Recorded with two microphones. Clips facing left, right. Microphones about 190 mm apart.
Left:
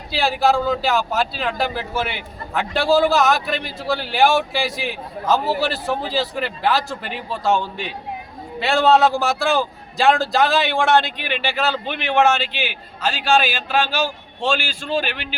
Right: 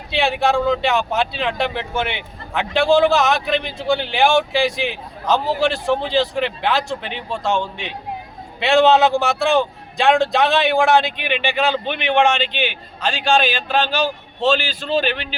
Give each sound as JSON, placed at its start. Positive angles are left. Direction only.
{"t": 0.1, "sound": "a man's voice", "side_deg": 0}